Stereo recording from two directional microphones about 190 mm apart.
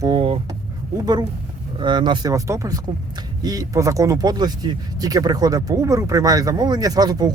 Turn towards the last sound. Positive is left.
turn(degrees=-20)  # may be behind; listen again after turning